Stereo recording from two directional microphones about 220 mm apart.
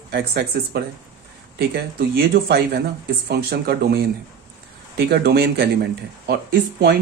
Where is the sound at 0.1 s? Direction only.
45° right (ahead or behind).